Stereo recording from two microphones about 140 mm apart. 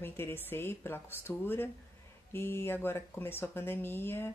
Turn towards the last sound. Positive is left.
turn(degrees=15)  # may be behind; listen again after turning